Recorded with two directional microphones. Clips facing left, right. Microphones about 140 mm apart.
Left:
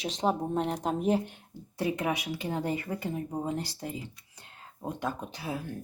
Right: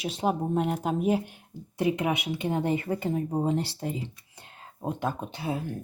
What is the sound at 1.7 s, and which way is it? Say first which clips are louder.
Speech: right 4 dB; 20° right (ahead or behind).